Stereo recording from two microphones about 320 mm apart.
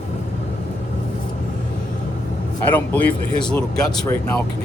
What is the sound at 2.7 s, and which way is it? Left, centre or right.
Speech, centre.